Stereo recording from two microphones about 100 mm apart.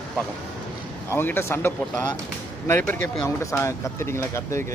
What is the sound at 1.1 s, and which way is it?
A man's voice, 20° left (ahead or behind).